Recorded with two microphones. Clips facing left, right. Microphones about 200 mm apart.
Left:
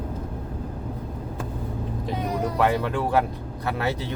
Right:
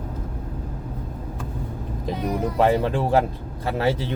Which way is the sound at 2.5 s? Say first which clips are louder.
Right 4 dB; 25° right (ahead or behind).